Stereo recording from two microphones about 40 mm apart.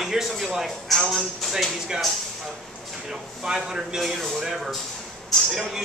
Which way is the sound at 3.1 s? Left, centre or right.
Centre.